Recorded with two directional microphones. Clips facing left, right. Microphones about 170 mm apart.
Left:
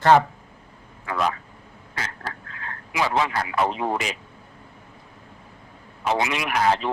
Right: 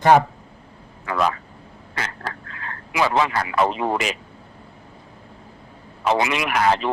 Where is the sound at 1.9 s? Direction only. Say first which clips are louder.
Right 3 dB; 75° right (ahead or behind).